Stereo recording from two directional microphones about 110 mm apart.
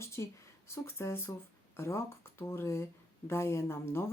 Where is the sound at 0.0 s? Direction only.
25° left (ahead or behind).